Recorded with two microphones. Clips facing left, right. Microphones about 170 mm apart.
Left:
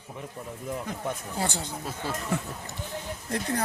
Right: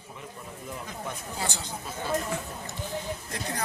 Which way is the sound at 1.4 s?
55° left (ahead or behind).